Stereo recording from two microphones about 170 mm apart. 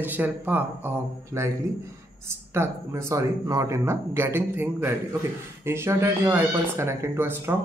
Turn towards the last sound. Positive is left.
turn(degrees=-15)  # may be behind; listen again after turning